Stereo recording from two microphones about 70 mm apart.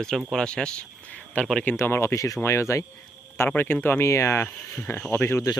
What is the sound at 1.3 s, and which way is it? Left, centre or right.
Speech, left.